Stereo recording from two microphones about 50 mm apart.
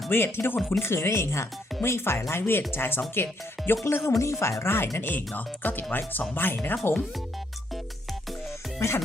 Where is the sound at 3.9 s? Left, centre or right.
Left.